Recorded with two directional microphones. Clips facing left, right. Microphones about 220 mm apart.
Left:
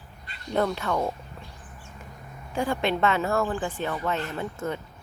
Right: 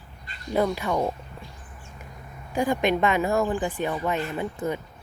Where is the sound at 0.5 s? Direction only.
10° right (ahead or behind).